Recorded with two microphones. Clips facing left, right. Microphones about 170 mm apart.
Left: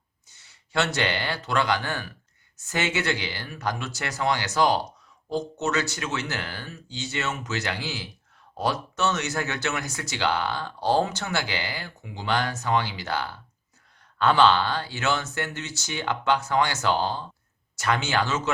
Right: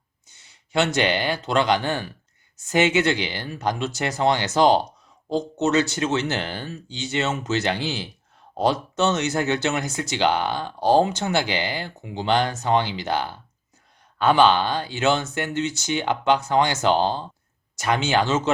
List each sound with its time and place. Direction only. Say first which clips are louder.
0.7 s speech: right 5 dB; 20° right (ahead or behind)